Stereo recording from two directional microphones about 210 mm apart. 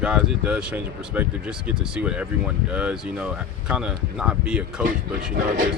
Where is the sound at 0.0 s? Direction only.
5° right (ahead or behind).